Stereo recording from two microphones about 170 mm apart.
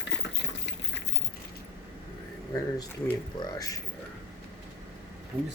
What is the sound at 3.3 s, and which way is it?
Speech, 20° left (ahead or behind).